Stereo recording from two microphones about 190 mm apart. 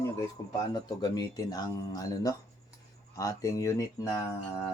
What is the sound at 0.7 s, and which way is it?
Speech, 20° left (ahead or behind).